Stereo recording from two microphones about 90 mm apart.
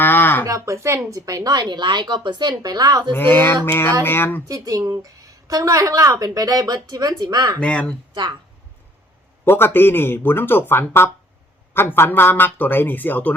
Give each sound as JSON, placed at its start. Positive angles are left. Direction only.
{"t": 0.0, "sound": "a sound", "side_deg": 20}
{"t": 0.4, "sound": "speech", "side_deg": -35}
{"t": 3.1, "sound": "speech", "side_deg": 20}
{"t": 4.4, "sound": "speech", "side_deg": -40}
{"t": 7.6, "sound": "speech", "side_deg": 15}
{"t": 9.4, "sound": "speech", "side_deg": 25}